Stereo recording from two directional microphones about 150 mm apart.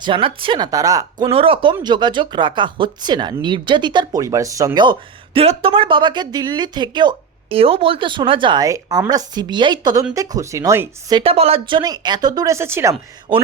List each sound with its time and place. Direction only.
0.0 s a woman's voice: 35° right (ahead or behind)
1.3 s a woman's voice: 40° right (ahead or behind); by 11.2 s 20° right (ahead or behind)
11.2 s speech: 40° right (ahead or behind); by 13.0 s 20° right (ahead or behind)